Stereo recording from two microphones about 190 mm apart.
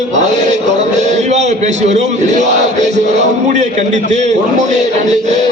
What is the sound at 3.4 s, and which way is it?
A man's voice, 40° right (ahead or behind).